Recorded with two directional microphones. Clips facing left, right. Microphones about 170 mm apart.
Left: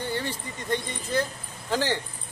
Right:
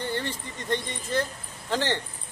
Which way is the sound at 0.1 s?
10° left (ahead or behind).